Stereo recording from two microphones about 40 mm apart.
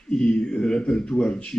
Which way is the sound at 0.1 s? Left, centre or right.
Left.